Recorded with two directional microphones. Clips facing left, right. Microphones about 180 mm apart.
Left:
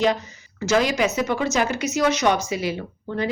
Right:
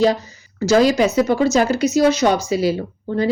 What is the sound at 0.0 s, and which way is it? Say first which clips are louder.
Speech: right 5 dB; 35° right (ahead or behind).